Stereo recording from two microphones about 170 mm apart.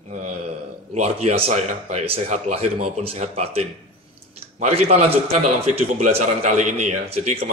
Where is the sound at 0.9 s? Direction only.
35° right (ahead or behind).